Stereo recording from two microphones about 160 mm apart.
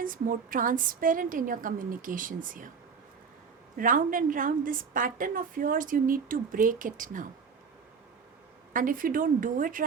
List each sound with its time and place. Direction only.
0.0 s a woman's voice: 60° right (ahead or behind)
3.8 s a woman's voice: 60° right (ahead or behind)
8.7 s a woman's voice: 60° right (ahead or behind)